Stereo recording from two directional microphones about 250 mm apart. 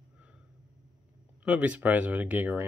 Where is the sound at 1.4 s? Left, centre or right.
Centre.